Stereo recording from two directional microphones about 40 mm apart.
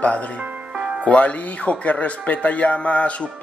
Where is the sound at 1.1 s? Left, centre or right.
Left.